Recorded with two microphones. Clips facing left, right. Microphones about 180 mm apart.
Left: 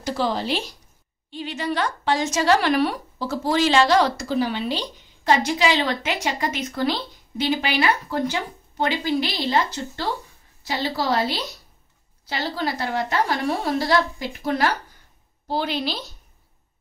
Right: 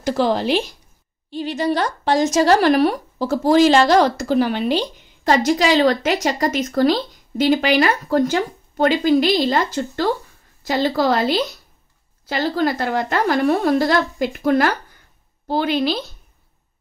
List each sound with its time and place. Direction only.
0.0 s speech: 50° right (ahead or behind)
1.3 s speech: 40° right (ahead or behind)